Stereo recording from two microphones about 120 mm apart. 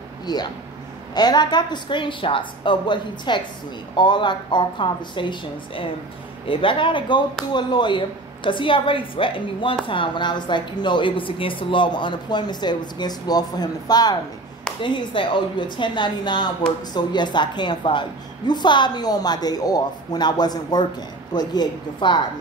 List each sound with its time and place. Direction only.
0.3 s a woman's voice: 35° left (ahead or behind)